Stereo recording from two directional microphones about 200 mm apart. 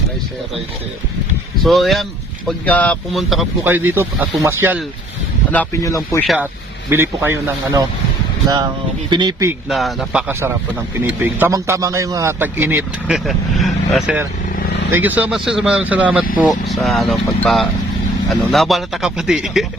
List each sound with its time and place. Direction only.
1.6 s speech: centre (ahead or behind)
5.5 s speech: 10° left (ahead or behind)
6.2 s a man's voice: 5° right (ahead or behind)
9.0 s speech: 20° right (ahead or behind)
9.5 s a man's voice: centre (ahead or behind)
14.5 s vehicle: 50° left (ahead or behind)
14.9 s a man's voice: 10° right (ahead or behind)